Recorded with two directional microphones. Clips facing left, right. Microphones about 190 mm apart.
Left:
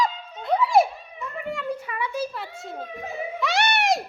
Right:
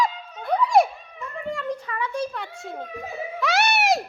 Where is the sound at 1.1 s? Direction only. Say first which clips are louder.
Right 1 dB; 5° left (ahead or behind).